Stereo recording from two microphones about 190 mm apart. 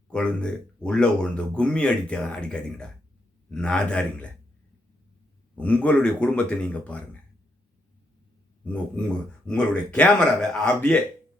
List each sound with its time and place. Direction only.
0.1 s speech: 5° left (ahead or behind)
5.5 s speech: 5° left (ahead or behind)
8.6 s speech: 5° left (ahead or behind)